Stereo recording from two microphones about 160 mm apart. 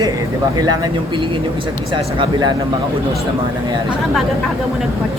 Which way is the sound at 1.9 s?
30° right (ahead or behind).